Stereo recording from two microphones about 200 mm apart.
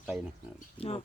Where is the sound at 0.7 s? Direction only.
30° left (ahead or behind).